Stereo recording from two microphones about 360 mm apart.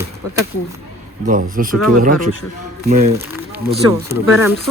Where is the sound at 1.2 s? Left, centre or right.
Right.